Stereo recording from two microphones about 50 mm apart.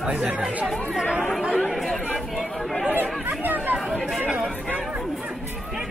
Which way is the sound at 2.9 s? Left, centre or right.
Right.